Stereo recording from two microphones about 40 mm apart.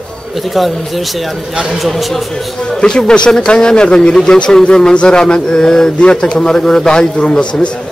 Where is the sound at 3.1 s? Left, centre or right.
Left.